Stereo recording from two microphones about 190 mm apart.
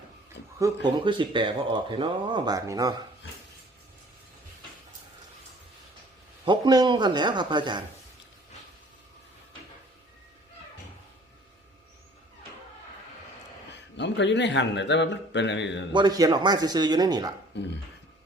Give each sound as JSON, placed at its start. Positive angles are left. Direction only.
{"t": 0.4, "sound": "a sound", "side_deg": 65}
{"t": 1.0, "sound": "speech", "side_deg": -25}
{"t": 6.4, "sound": "speech", "side_deg": -25}
{"t": 13.9, "sound": "speech", "side_deg": 70}
{"t": 15.9, "sound": "speech", "side_deg": -25}
{"t": 17.5, "sound": "a sound", "side_deg": 65}